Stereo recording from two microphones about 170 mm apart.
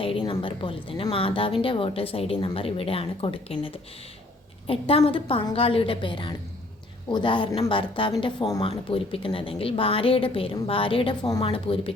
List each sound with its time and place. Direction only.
0.0 s a woman's voice: 30° left (ahead or behind)
4.6 s a woman's voice: 35° left (ahead or behind)